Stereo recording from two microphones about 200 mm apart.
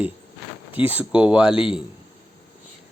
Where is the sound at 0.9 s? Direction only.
5° right (ahead or behind).